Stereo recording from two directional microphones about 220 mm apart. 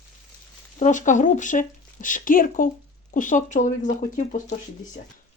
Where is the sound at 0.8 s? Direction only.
35° left (ahead or behind).